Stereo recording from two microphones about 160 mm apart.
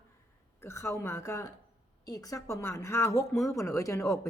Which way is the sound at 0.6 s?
15° left (ahead or behind).